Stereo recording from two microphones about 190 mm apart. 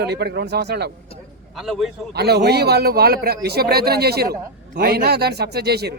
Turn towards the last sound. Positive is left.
turn(degrees=-60)  # may be behind; listen again after turning